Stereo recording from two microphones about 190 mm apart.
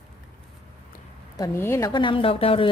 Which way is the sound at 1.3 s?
15° left (ahead or behind).